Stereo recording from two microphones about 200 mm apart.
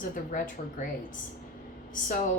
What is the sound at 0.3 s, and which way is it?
Speech, 40° left (ahead or behind).